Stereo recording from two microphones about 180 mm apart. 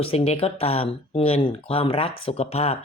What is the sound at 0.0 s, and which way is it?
Speech, 35° left (ahead or behind).